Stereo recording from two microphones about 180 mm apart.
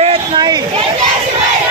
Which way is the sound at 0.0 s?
25° right (ahead or behind).